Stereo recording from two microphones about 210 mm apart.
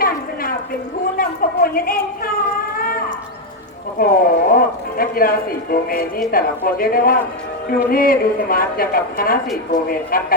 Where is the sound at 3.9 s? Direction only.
45° left (ahead or behind).